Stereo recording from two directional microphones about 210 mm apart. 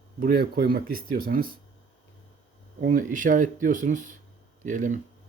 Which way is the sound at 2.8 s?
40° right (ahead or behind).